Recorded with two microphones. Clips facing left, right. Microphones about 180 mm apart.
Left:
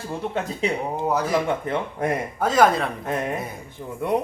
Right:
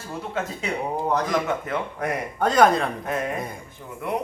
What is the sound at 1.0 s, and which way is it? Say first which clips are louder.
Speech: left 2 dB; 5° left (ahead or behind).